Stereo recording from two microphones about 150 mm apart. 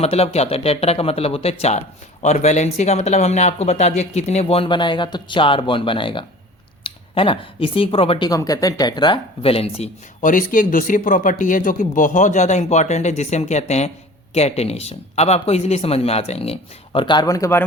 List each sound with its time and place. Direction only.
0.0 s speech: 45° left (ahead or behind)
8.3 s speech: 25° left (ahead or behind); by 10.2 s 45° left (ahead or behind)
10.2 s speech: 65° left (ahead or behind); by 17.6 s 20° left (ahead or behind)